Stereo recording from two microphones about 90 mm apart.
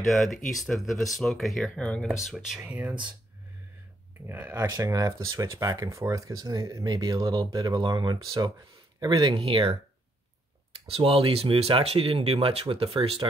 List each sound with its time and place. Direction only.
0.2 s speech: centre (ahead or behind)
2.7 s speech: 15° right (ahead or behind)
4.3 s speech: 25° right (ahead or behind)
4.6 s speech: 40° right (ahead or behind)
9.4 s speech: 90° right
10.9 s speech: 90° right